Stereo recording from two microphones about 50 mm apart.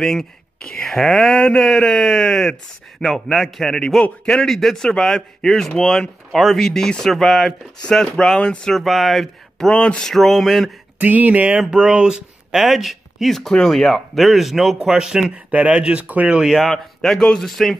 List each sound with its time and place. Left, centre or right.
0.0 s speech: centre
4.5 s speech: centre
7.1 s speech: centre
8.7 s speech: centre
9.7 s speech: centre
10.0 s speech: centre
11.0 s speech: right
11.7 s speech: centre
15.5 s speech: right
16.3 s speech: centre
16.6 s speech: centre